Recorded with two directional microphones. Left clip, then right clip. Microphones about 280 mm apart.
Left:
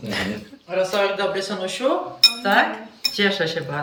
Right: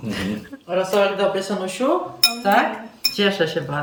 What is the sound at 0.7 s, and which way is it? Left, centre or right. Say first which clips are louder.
A man's voice: right 2 dB; right.